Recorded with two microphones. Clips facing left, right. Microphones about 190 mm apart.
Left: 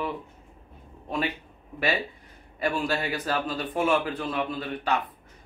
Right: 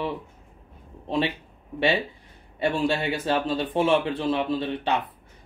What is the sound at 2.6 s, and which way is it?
Speech, 25° right (ahead or behind).